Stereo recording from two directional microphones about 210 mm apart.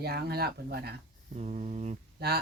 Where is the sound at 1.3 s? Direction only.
30° right (ahead or behind).